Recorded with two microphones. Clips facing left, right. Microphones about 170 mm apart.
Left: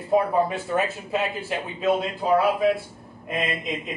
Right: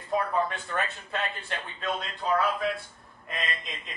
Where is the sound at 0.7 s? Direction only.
5° left (ahead or behind).